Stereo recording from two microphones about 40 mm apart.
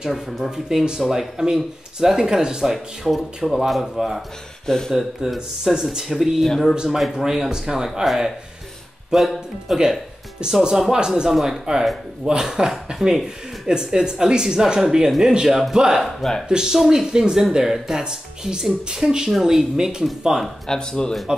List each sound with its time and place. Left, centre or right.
0.1 s speech: centre
0.5 s speech: centre
4.6 s speech: centre
4.9 s speech: centre
10.4 s speech: right
11.2 s speech: centre
16.2 s speech: centre
16.4 s speech: centre
20.6 s speech: centre
21.3 s speech: centre